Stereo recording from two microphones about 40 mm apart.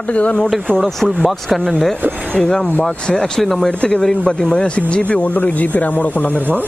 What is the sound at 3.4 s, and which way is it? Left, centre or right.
Speech, centre.